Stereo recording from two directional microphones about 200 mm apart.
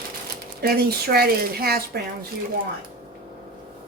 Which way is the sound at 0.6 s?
50° right (ahead or behind).